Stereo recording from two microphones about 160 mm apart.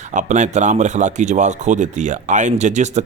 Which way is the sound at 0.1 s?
50° right (ahead or behind).